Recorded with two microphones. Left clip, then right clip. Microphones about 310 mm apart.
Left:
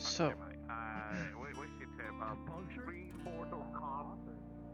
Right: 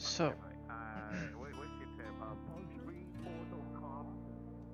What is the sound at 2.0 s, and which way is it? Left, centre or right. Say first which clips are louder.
Music: left 5 dB; left.